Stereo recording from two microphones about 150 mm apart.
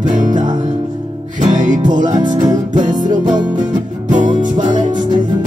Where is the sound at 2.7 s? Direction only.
55° right (ahead or behind).